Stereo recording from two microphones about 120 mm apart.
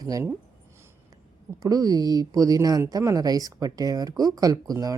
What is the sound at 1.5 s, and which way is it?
A woman's voice, 30° right (ahead or behind).